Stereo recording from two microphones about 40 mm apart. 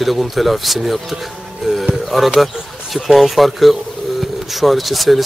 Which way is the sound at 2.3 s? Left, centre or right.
Centre.